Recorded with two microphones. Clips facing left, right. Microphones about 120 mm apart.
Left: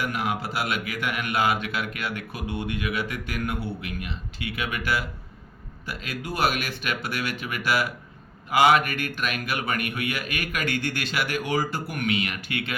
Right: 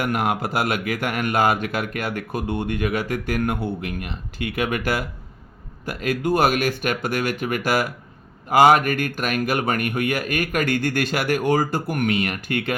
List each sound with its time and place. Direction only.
0.0 s speech: 50° right (ahead or behind)